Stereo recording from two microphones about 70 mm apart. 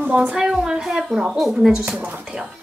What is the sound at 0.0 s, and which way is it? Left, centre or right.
Speech, right.